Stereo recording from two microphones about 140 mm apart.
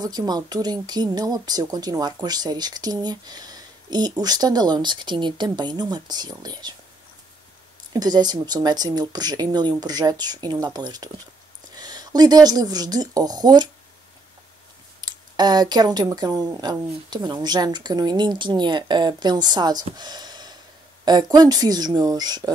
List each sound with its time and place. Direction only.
0.0 s speech: 30° right (ahead or behind)
7.9 s speech: 30° right (ahead or behind)
15.0 s speech: 30° right (ahead or behind)
20.0 s a sound: 30° right (ahead or behind)
21.0 s speech: 30° right (ahead or behind)